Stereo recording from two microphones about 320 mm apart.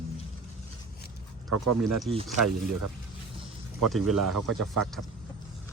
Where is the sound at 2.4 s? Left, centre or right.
Right.